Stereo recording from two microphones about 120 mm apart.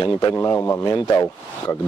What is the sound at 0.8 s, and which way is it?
Speech, 30° left (ahead or behind).